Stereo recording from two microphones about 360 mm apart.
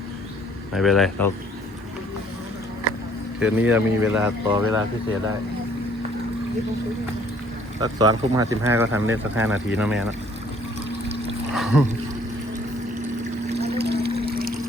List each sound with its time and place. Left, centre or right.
0.7 s speech: centre
3.4 s speech: centre
7.8 s speech: centre
11.5 s speech: centre
13.5 s a sound: right
14.1 s music: right